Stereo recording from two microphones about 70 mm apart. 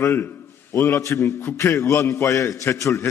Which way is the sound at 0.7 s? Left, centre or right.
Left.